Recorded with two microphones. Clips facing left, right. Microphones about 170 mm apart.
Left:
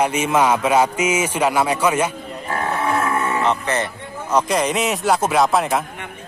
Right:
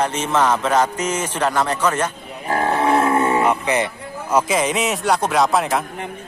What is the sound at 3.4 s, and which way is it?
Speech, 10° right (ahead or behind).